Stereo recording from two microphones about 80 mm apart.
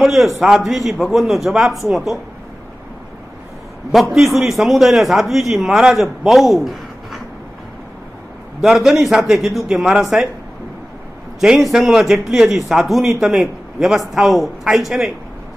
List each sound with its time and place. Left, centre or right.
0.0 s a man's voice: centre
3.9 s a man's voice: centre
8.5 s a man's voice: centre
11.3 s a man's voice: centre